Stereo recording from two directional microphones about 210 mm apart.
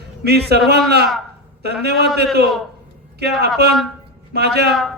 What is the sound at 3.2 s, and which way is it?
A man's voice, 50° right (ahead or behind).